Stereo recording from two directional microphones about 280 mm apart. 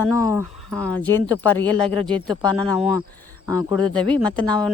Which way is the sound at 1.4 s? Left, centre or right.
Centre.